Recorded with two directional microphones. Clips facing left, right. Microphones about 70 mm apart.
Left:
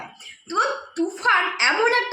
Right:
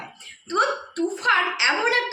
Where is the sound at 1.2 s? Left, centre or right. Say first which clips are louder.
Left 2 dB; left.